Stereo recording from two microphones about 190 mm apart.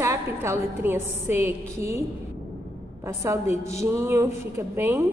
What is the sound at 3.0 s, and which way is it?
A woman's voice, 15° right (ahead or behind).